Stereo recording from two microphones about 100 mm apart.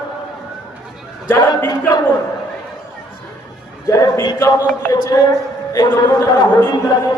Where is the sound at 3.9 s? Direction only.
35° left (ahead or behind).